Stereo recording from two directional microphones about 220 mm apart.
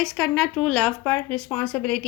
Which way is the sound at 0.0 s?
Centre (ahead or behind).